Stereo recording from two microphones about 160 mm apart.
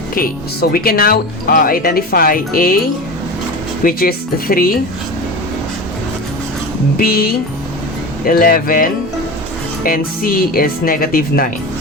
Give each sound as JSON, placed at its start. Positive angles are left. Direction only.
{"t": 0.1, "sound": "speech", "side_deg": 65}
{"t": 3.8, "sound": "speech", "side_deg": 65}
{"t": 6.9, "sound": "speech", "side_deg": 70}